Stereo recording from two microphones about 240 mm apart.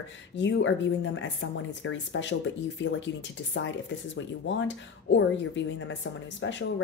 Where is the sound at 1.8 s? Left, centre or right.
Left.